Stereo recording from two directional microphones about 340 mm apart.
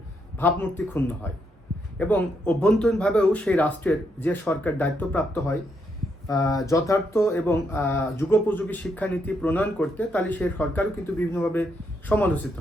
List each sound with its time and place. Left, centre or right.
0.3 s speech: centre